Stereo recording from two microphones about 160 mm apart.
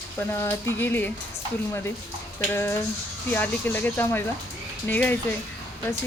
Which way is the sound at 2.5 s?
15° left (ahead or behind).